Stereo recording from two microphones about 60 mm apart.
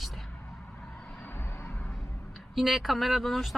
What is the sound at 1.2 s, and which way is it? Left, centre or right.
Vehicle, left.